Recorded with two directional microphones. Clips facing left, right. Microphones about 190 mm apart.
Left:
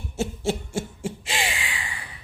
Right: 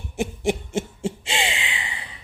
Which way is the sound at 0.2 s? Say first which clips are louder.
Right 2 dB; 20° right (ahead or behind).